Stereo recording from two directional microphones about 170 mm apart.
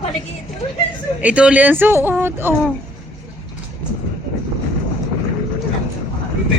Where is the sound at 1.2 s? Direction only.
5° right (ahead or behind).